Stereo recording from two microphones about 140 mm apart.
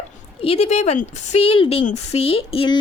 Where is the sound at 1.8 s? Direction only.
50° left (ahead or behind).